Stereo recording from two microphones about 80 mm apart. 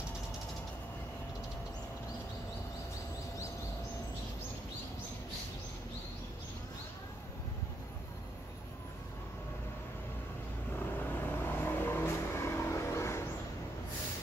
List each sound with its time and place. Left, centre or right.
11.0 s vehicle: left